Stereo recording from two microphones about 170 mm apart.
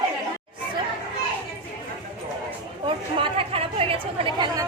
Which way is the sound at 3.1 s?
30° right (ahead or behind).